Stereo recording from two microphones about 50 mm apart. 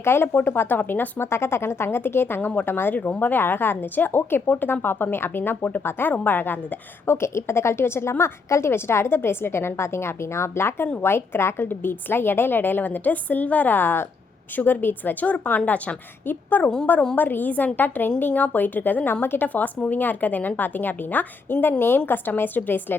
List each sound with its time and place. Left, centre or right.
0.0 s a woman's voice: left
5.4 s a woman's voice: left
7.1 s a woman's voice: left
8.2 s a woman's voice: left
8.7 s a woman's voice: left
15.2 s a woman's voice: left